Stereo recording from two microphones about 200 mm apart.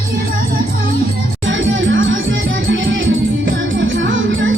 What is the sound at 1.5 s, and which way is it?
Music, 70° right (ahead or behind).